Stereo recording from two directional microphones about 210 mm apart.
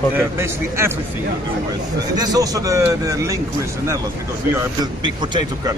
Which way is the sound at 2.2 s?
15° right (ahead or behind).